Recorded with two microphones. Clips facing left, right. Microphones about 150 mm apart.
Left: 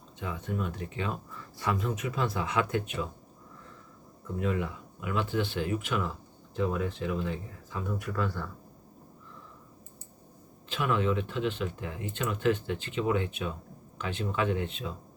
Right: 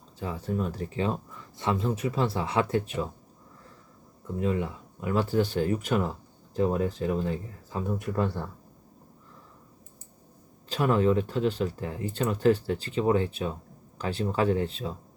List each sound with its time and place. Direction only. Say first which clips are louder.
0.2 s speech: right 4 dB; 35° right (ahead or behind)
1.4 s speech: even; 25° right (ahead or behind)
4.4 s speech: right 3 dB; 30° right (ahead or behind)
10.7 s speech: right 5 dB; 40° right (ahead or behind)